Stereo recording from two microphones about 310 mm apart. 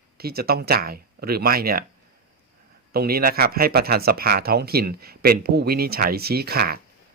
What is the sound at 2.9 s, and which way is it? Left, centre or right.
Speech, right.